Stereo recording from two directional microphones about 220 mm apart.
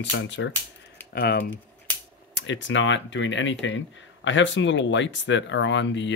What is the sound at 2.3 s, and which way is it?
Speech, 55° left (ahead or behind).